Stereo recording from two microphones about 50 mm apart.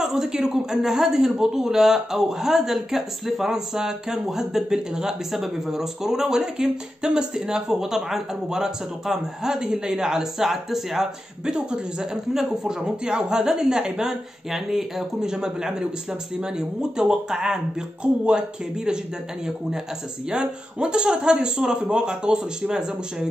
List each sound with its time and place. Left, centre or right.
0.0 s speech: centre
11.5 s speech: centre
20.2 s speech: centre